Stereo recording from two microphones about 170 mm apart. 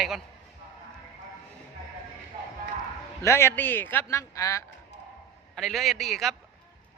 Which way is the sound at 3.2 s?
15° left (ahead or behind).